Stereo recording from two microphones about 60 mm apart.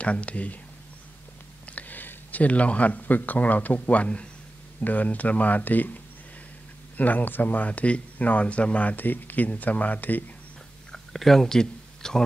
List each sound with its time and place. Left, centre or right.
0.0 s speech: left
1.7 s speech: left
7.0 s speech: left
10.9 s a sound: centre